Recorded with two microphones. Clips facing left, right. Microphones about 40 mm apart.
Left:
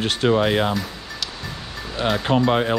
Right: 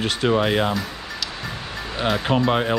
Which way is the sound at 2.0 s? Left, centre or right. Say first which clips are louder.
Left 1 dB; centre.